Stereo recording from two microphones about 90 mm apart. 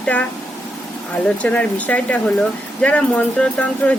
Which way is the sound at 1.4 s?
15° left (ahead or behind).